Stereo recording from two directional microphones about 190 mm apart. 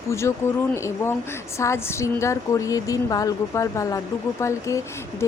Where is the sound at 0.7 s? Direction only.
15° left (ahead or behind).